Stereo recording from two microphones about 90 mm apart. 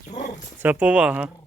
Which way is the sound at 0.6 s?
15° right (ahead or behind).